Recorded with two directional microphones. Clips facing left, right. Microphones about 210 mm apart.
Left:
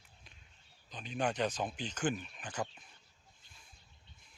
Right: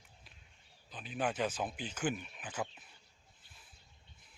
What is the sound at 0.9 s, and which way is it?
Speech, 5° right (ahead or behind).